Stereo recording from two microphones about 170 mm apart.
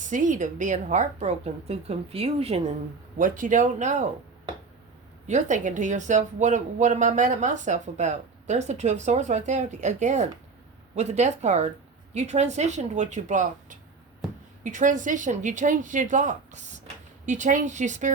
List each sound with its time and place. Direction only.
0.0 s a woman's voice: 45° right (ahead or behind)
3.2 s a woman's voice: 50° right (ahead or behind)
5.3 s a woman's voice: 45° right (ahead or behind)